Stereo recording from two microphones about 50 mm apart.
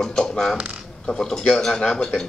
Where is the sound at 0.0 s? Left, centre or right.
Centre.